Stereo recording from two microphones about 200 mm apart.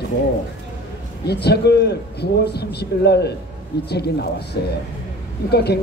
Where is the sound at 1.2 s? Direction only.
55° left (ahead or behind).